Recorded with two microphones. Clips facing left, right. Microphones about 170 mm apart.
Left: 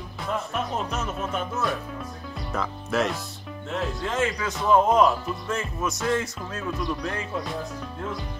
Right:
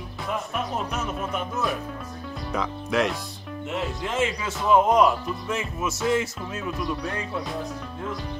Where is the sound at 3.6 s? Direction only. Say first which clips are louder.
Even; 10° right (ahead or behind).